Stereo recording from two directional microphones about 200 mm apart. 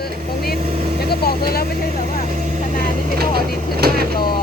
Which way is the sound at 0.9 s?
50° left (ahead or behind).